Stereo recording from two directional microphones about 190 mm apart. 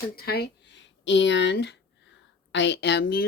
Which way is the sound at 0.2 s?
55° left (ahead or behind).